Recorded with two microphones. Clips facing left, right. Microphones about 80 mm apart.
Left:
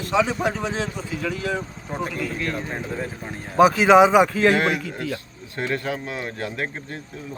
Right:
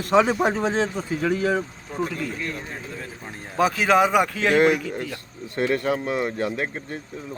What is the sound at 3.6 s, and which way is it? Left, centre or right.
Speech, centre.